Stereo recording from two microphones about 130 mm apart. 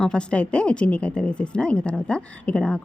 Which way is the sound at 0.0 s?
5° left (ahead or behind).